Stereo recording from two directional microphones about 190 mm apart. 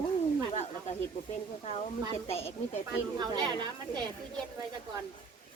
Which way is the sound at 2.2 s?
30° left (ahead or behind).